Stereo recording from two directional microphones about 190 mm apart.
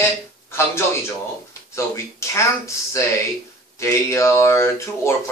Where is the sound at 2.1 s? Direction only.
15° left (ahead or behind).